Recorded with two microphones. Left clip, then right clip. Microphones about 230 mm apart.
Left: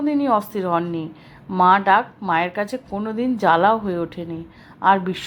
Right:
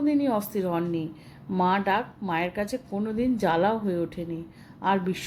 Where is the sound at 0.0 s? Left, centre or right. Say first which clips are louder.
Left 6 dB; centre.